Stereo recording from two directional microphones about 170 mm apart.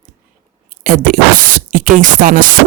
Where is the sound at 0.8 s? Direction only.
50° right (ahead or behind).